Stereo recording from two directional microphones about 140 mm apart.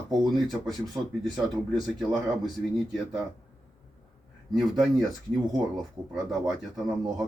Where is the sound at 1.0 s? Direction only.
15° right (ahead or behind).